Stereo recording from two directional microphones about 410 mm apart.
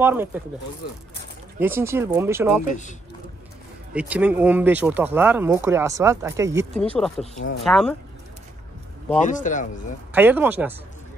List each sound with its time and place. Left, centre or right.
0.0 s speech: centre
1.6 s speech: centre
3.9 s speech: centre
9.2 s speech: centre
10.1 s speech: centre